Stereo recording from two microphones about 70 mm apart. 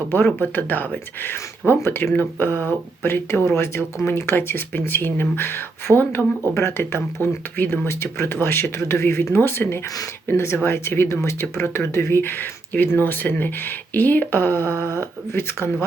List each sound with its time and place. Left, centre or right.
0.3 s speech: left